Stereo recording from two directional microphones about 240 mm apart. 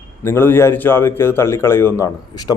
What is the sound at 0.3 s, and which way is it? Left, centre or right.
A man's voice, centre.